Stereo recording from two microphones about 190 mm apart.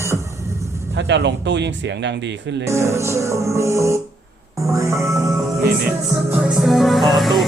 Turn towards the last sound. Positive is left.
turn(degrees=0)  # may be behind; listen again after turning